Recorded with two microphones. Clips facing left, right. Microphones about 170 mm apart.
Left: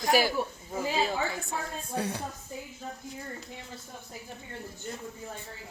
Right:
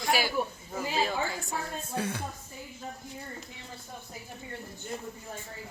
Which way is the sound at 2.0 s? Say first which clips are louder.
Left 1 dB; 35° left (ahead or behind).